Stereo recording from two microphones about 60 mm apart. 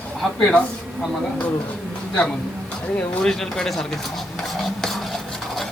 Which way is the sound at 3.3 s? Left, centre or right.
Centre.